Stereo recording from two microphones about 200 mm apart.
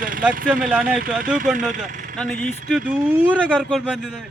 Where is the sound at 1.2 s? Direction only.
40° right (ahead or behind).